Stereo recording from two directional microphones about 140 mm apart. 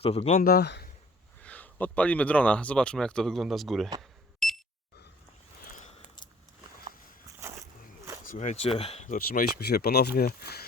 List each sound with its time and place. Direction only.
0.0 s speech: 50° left (ahead or behind)
0.3 s speech: 90° left
1.4 s speech: 10° left (ahead or behind)
4.4 s alarm clock: centre (ahead or behind)
5.7 s a sound: 60° left (ahead or behind)
6.8 s walk: 20° right (ahead or behind)
8.2 s speech: 65° left (ahead or behind); by 9.0 s 45° left (ahead or behind)
9.0 s speech: 80° left